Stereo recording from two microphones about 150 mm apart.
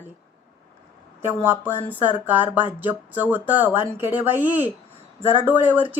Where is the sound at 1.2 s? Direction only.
15° right (ahead or behind).